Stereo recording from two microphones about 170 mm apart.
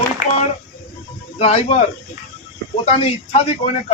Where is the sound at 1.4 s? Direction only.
35° left (ahead or behind).